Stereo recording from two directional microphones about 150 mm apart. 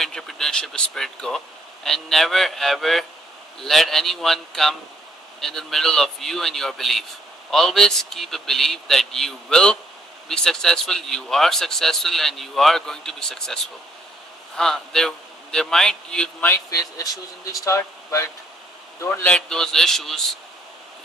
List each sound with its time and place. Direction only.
0.0 s a man's voice: centre (ahead or behind)
16.4 s speech: 25° left (ahead or behind)
19.0 s speech: 5° left (ahead or behind)